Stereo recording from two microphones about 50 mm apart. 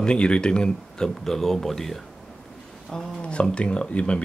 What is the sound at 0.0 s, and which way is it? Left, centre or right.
Speech, centre.